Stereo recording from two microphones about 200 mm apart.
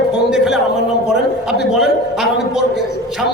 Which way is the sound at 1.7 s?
Centre (ahead or behind).